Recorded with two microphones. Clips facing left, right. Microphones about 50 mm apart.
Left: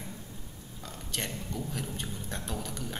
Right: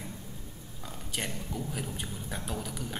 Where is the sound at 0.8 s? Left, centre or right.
Centre.